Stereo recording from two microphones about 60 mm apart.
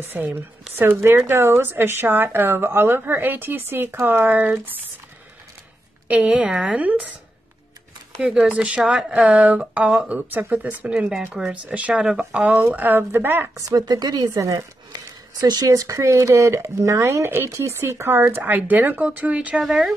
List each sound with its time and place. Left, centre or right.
0.1 s a woman's voice: right
6.0 s speech: right
8.5 s speech: centre
10.9 s speech: centre
11.7 s speech: right
12.0 s speech: centre
12.7 s a woman's voice: right
13.6 s speech: right
18.4 s speech: right